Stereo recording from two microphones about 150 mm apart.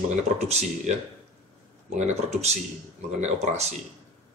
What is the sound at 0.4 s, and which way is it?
Speech, 50° right (ahead or behind).